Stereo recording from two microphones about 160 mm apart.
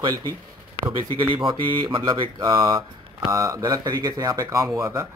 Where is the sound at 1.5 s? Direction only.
30° right (ahead or behind).